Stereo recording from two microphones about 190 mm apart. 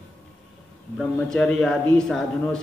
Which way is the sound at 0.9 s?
Centre (ahead or behind).